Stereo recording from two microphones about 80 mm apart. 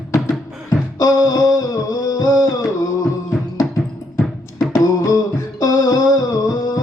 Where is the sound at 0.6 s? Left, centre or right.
Left.